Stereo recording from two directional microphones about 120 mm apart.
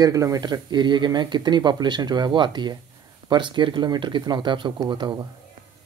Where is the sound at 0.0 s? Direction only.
30° right (ahead or behind).